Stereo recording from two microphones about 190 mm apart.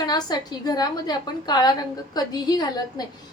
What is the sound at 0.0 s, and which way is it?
A woman's voice, 20° left (ahead or behind).